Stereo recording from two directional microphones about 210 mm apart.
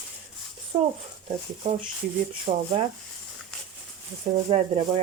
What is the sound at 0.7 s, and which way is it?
Speech, 25° right (ahead or behind).